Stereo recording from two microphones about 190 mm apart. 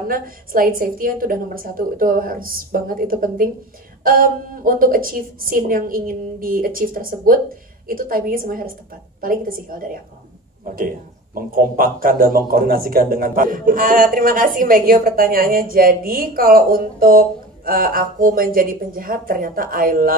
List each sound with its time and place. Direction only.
0.1 s a man's voice: 50° right (ahead or behind)
11.3 s a man's voice: 50° right (ahead or behind)